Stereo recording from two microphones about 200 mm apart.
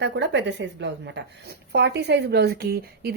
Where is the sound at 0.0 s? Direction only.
60° right (ahead or behind).